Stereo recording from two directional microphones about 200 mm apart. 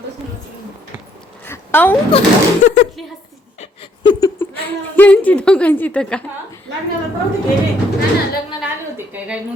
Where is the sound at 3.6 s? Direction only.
25° left (ahead or behind).